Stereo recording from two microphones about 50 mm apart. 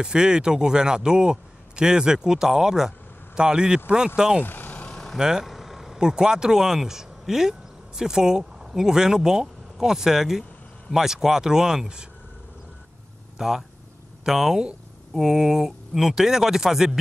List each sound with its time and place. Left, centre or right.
0.0 s speech: centre
4.4 s vehicle: left
4.8 s vehicle: centre
5.1 s vehicle: centre
5.9 s speech: centre
13.4 s speech: centre